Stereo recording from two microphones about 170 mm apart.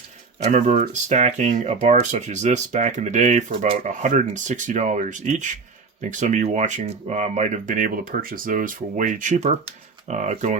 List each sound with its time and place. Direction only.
0.3 s speech: 40° right (ahead or behind)